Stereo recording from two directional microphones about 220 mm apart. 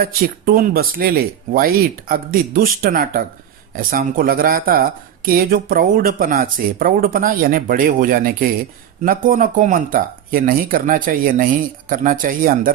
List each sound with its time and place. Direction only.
0.0 s speech: 40° right (ahead or behind)